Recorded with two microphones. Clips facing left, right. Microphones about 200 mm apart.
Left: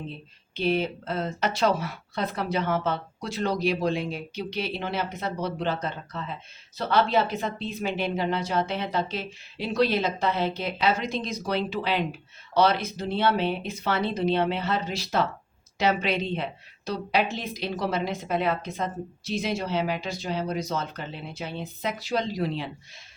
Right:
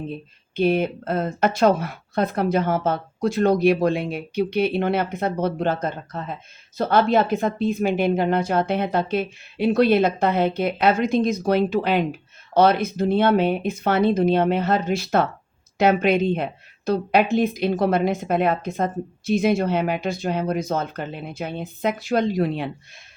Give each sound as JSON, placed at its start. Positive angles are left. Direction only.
{"t": 0.5, "sound": "a woman's voice", "side_deg": -55}